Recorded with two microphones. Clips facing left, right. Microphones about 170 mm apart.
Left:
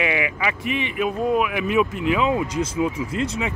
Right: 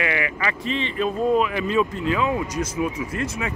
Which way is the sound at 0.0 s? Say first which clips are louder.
Left 2 dB; 15° left (ahead or behind).